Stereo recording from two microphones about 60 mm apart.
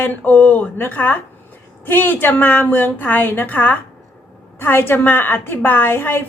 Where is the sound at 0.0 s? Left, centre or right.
Left.